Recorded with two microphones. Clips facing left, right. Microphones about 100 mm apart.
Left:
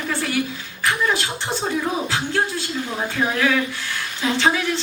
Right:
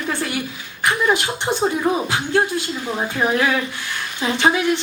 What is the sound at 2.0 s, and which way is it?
Speech, 20° right (ahead or behind).